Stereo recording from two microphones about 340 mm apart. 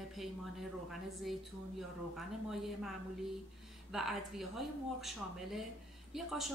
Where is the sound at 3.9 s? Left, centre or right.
Centre.